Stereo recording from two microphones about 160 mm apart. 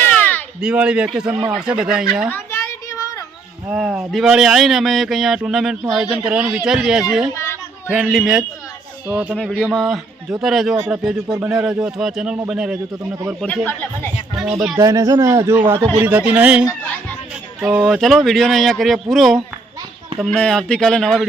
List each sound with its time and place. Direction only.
0.0 s cat: 10° left (ahead or behind)
0.6 s speech: 5° right (ahead or behind)
2.3 s children playing: 15° left (ahead or behind)
3.7 s speech: 5° right (ahead or behind)
13.4 s speech: 10° left (ahead or behind)
14.8 s a man's voice: 20° right (ahead or behind)
16.6 s children playing: 10° left (ahead or behind)
17.6 s speech: 10° right (ahead or behind)